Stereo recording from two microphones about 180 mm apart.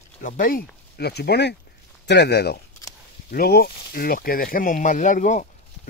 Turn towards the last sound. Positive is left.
turn(degrees=45)  # may be behind; listen again after turning